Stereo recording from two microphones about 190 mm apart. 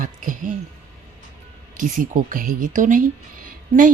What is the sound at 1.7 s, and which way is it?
A woman's voice, 45° right (ahead or behind).